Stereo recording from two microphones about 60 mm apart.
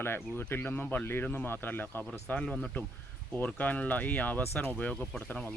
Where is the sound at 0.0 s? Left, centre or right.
Left; by 5.0 s centre.